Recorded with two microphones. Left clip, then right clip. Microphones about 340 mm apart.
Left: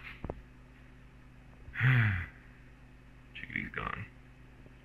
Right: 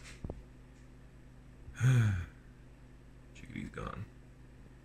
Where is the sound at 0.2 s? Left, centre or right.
Left.